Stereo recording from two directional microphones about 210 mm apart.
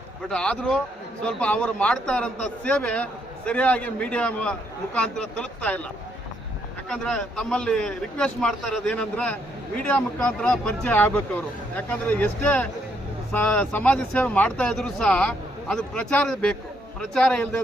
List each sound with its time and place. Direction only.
0.3 s a man's voice: 5° left (ahead or behind)
6.9 s a man's voice: 5° left (ahead or behind)